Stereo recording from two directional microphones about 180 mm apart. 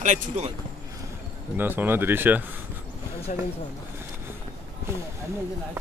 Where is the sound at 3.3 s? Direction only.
45° left (ahead or behind).